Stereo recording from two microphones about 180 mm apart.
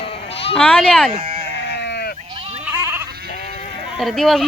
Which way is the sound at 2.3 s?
35° right (ahead or behind).